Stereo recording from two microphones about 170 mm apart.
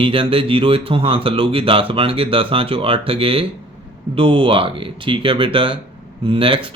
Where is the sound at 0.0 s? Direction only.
30° right (ahead or behind).